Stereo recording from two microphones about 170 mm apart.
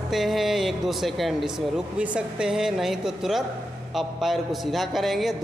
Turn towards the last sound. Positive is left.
turn(degrees=0)  # may be behind; listen again after turning